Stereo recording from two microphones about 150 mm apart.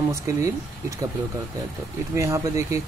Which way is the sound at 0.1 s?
20° right (ahead or behind).